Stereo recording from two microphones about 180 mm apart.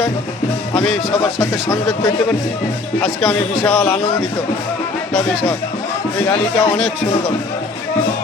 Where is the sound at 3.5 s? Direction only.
Centre (ahead or behind).